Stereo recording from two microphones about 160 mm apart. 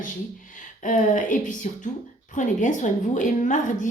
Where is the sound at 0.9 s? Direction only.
50° left (ahead or behind).